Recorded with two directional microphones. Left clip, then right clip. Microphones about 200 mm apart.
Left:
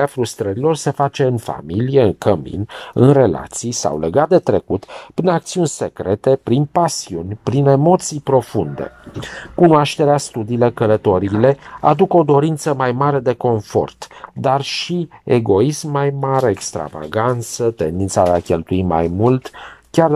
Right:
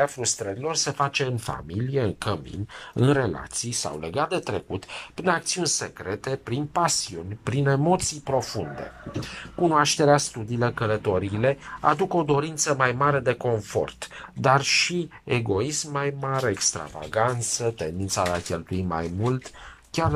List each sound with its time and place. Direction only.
0.0 s speech: 35° left (ahead or behind); by 5.7 s 20° left (ahead or behind)
5.8 s speech: 30° left (ahead or behind)
9.6 s speech: 25° left (ahead or behind)
10.8 s speech: 35° left (ahead or behind)
11.8 s speech: 25° left (ahead or behind)
14.4 s speech: 20° left (ahead or behind)